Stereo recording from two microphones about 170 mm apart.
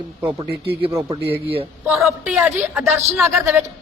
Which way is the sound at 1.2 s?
75° right (ahead or behind).